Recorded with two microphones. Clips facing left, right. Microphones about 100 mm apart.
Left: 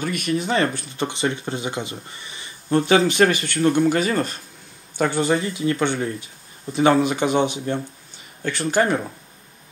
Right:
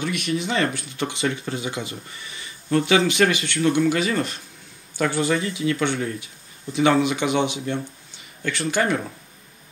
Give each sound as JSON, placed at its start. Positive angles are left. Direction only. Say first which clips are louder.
{"t": 0.0, "sound": "speech", "louder": "left 2 dB", "side_deg": 45}
{"t": 3.1, "sound": "speech", "louder": "left 2 dB", "side_deg": 45}